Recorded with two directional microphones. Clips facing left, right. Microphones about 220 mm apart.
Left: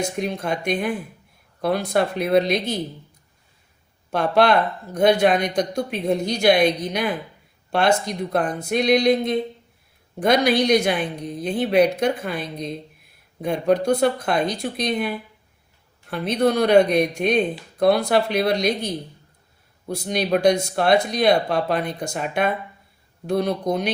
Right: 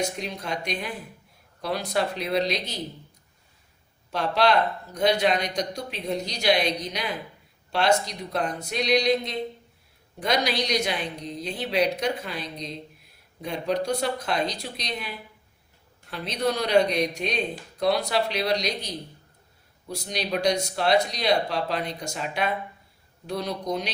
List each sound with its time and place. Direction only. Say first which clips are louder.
0.2 s speech: left 7 dB; 55° left (ahead or behind)
4.1 s speech: left 5 dB; 55° left (ahead or behind)